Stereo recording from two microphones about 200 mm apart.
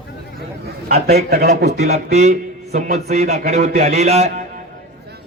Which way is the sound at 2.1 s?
35° right (ahead or behind).